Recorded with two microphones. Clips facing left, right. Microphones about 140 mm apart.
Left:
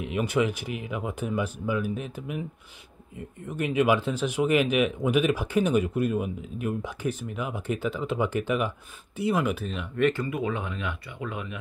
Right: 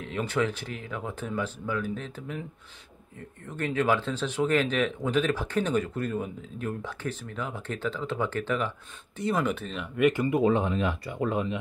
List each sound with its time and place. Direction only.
0.0 s speech: 15° left (ahead or behind)
9.9 s speech: 10° right (ahead or behind)
10.2 s speech: 30° right (ahead or behind)